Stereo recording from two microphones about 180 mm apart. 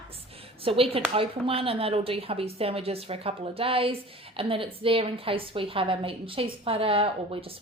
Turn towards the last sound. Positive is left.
turn(degrees=-30)  # may be behind; listen again after turning